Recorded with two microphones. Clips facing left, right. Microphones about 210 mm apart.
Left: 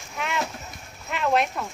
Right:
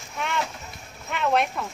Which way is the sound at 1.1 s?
Centre (ahead or behind).